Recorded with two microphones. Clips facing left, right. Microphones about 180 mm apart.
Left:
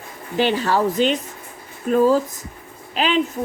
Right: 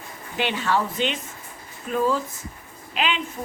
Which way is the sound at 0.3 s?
35° left (ahead or behind).